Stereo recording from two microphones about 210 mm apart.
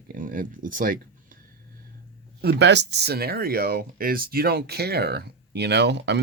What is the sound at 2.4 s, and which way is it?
Speech, 55° right (ahead or behind).